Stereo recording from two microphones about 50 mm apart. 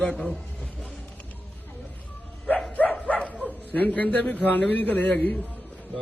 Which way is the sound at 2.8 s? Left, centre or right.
Left.